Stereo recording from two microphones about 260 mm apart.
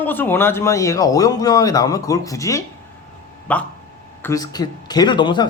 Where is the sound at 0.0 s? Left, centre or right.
Centre.